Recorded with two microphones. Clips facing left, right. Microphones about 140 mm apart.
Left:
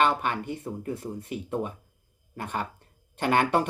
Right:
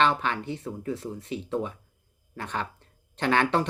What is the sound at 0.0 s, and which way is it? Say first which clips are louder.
Speech: even; 10° left (ahead or behind).